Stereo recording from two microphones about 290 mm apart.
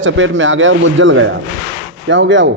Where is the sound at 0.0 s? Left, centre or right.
Right.